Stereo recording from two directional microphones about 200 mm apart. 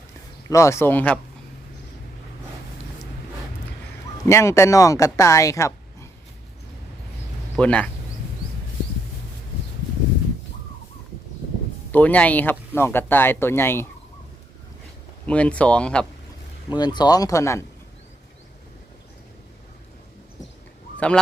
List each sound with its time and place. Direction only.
0.4 s speech: 15° left (ahead or behind)
4.3 s speech: 15° left (ahead or behind)
7.5 s speech: 5° left (ahead or behind)
11.9 s speech: 10° left (ahead or behind)
15.3 s speech: 5° left (ahead or behind)
16.7 s speech: 20° left (ahead or behind)